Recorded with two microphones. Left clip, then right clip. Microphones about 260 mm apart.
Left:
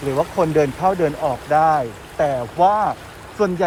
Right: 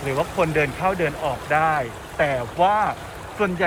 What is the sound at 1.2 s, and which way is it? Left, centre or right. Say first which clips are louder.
Speech: left 5 dB; centre.